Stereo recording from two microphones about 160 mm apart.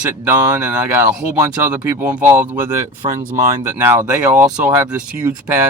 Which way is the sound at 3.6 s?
15° right (ahead or behind).